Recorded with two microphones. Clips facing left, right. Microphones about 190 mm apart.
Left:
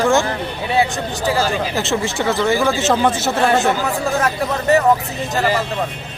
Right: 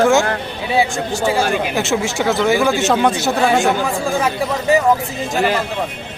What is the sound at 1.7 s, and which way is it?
Speech, centre (ahead or behind).